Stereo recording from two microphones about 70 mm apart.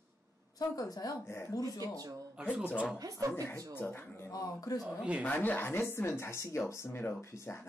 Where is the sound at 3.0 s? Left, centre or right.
Right.